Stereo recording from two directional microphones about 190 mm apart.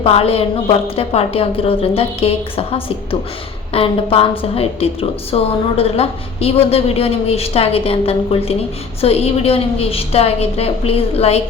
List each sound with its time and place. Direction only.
0.0 s a woman's voice: 30° left (ahead or behind)